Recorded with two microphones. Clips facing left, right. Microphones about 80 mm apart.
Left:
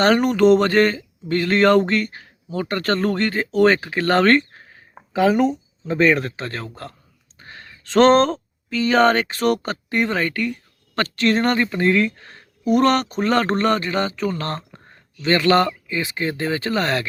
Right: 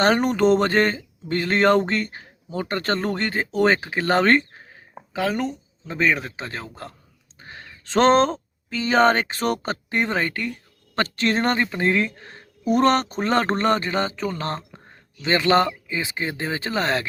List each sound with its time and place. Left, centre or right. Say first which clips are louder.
0.0 s speech: left 3 dB; right
5.1 s speech: left 7 dB; centre; by 17.1 s right